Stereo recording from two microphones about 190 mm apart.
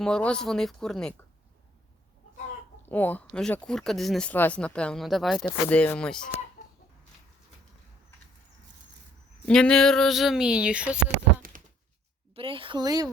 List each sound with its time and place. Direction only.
0.0 s speech: 5° left (ahead or behind)
2.9 s speech: 10° left (ahead or behind)
9.5 s speech: 5° left (ahead or behind)
12.3 s speech: 30° right (ahead or behind)